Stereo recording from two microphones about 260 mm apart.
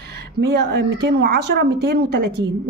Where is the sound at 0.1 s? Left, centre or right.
Right.